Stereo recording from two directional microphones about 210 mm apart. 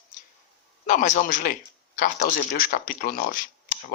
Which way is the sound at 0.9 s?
35° left (ahead or behind).